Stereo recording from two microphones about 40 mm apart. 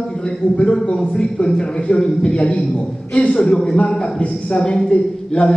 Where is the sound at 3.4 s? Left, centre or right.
Centre.